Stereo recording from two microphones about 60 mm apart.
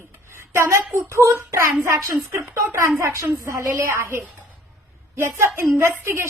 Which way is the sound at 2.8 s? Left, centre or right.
Right.